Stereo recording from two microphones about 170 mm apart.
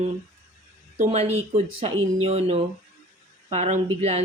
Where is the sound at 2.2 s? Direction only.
35° right (ahead or behind).